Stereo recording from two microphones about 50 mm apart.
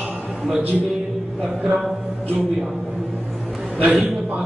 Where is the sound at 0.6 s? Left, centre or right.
Right.